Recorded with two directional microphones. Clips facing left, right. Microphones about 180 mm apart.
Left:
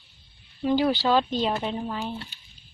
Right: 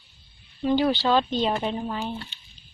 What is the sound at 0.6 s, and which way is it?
Speech, 5° left (ahead or behind).